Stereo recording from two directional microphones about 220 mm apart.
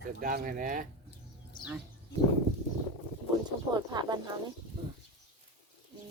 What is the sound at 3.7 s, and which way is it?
Speech, 20° right (ahead or behind).